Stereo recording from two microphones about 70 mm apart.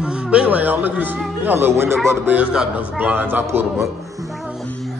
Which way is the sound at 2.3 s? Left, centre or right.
Centre.